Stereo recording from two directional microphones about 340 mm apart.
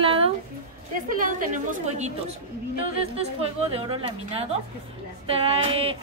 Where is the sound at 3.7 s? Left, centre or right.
Centre.